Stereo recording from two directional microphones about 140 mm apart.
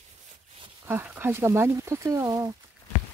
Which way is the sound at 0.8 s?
15° right (ahead or behind).